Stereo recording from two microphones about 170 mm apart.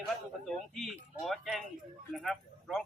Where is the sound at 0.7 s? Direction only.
Centre (ahead or behind).